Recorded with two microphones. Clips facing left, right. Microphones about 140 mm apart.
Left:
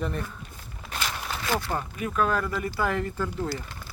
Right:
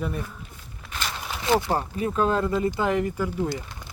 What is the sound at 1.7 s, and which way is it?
Speech, 30° right (ahead or behind).